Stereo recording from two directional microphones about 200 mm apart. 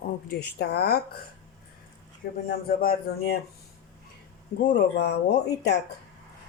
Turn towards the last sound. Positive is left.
turn(degrees=60)  # may be behind; listen again after turning